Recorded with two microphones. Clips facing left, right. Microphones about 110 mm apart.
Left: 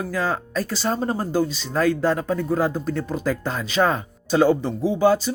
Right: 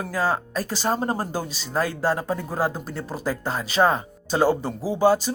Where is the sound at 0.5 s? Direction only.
40° right (ahead or behind).